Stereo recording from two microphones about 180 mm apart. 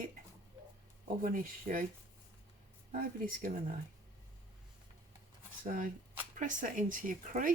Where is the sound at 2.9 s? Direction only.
50° right (ahead or behind).